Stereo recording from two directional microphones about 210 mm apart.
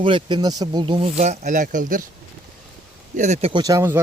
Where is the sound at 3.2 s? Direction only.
35° right (ahead or behind).